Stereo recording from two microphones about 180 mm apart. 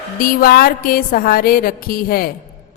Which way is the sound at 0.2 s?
55° left (ahead or behind).